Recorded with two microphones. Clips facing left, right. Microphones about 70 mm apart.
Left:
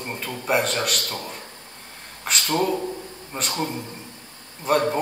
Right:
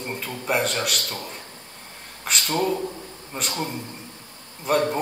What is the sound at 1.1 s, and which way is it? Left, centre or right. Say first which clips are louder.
Speech: left 2 dB; left.